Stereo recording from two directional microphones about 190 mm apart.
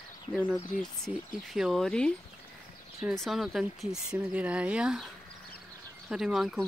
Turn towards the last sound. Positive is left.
turn(degrees=0)  # may be behind; listen again after turning